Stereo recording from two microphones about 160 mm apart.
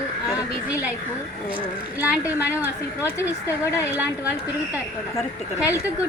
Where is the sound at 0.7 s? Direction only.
10° right (ahead or behind).